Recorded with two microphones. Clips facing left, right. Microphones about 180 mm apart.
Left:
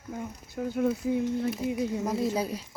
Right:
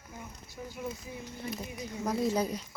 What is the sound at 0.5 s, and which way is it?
Speech, 65° left (ahead or behind).